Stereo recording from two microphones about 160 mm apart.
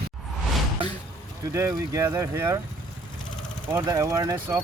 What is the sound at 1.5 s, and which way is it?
Speech, 20° right (ahead or behind).